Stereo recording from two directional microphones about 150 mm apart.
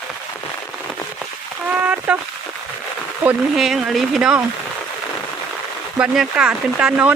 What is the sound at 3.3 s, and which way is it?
Speech, 5° right (ahead or behind).